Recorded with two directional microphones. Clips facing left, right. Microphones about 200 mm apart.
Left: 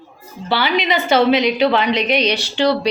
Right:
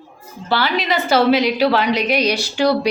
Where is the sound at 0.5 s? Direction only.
Centre (ahead or behind).